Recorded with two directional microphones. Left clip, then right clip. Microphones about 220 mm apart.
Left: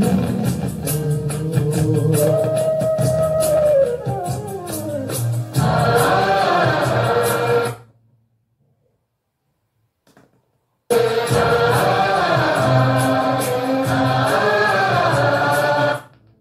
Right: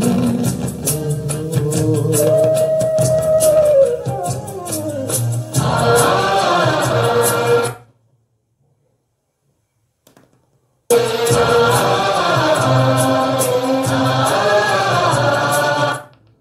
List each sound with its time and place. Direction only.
0.0 s music: 50° right (ahead or behind)
10.9 s music: 50° right (ahead or behind)